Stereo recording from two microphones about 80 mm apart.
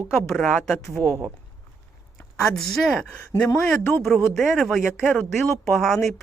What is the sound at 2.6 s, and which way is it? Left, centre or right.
Speech, centre.